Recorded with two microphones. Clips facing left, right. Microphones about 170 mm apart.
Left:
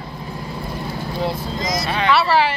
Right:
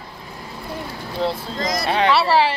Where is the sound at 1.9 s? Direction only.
30° right (ahead or behind).